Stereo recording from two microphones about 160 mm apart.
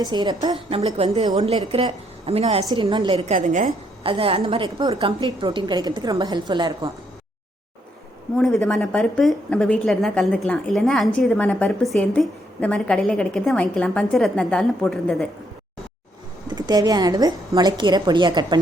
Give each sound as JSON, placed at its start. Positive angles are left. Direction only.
{"t": 0.0, "sound": "a woman's voice", "side_deg": -25}
{"t": 2.6, "sound": "a woman's voice", "side_deg": -30}
{"t": 3.3, "sound": "a woman's voice", "side_deg": -55}
{"t": 4.0, "sound": "a woman's voice", "side_deg": -35}
{"t": 8.4, "sound": "a woman's voice", "side_deg": 0}
{"t": 16.5, "sound": "a woman's voice", "side_deg": -25}